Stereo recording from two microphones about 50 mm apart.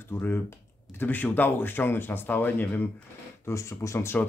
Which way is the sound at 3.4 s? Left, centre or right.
Left.